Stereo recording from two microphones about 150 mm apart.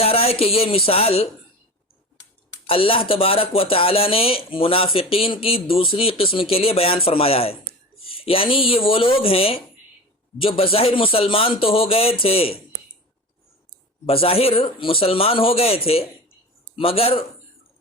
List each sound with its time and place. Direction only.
0.0 s speech: 40° left (ahead or behind)
2.6 s speech: 40° left (ahead or behind)
14.1 s speech: 40° left (ahead or behind)